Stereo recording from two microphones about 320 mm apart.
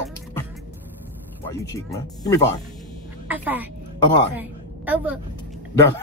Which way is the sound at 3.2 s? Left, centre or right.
Centre.